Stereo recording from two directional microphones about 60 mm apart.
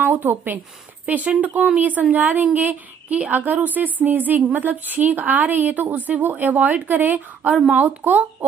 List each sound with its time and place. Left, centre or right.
0.0 s speech: right
1.0 s a woman's voice: right